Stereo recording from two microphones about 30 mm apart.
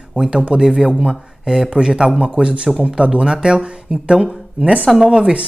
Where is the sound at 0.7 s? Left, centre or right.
Right.